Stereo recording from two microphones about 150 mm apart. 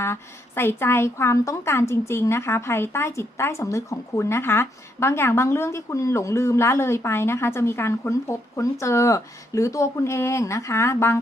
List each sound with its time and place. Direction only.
0.0 s speech: 15° left (ahead or behind)